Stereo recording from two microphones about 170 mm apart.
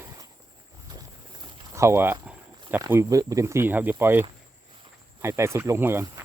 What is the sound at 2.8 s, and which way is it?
Speech, 20° right (ahead or behind).